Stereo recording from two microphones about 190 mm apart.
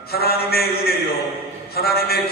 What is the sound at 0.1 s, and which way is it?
A man's voice, 55° left (ahead or behind).